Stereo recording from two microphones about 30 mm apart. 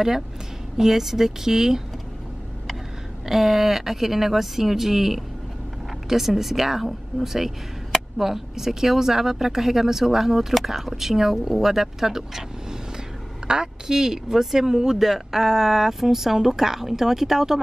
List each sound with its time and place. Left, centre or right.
0.7 s speech: centre
3.3 s speech: centre
13.5 s a woman's voice: right